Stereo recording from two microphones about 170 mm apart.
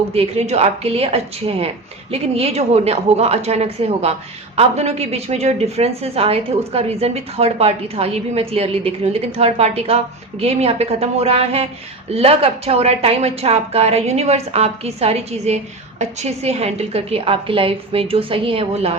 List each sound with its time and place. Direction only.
0.1 s a woman's voice: 35° right (ahead or behind)